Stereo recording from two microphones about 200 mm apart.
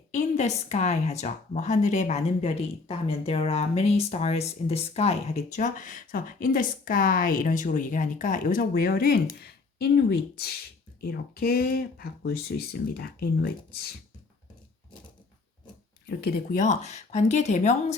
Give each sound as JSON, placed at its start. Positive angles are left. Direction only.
{"t": 0.1, "sound": "speech", "side_deg": 35}
{"t": 16.0, "sound": "speech", "side_deg": 50}